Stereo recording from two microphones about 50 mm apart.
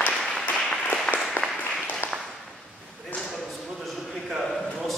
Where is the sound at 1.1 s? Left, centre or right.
Centre.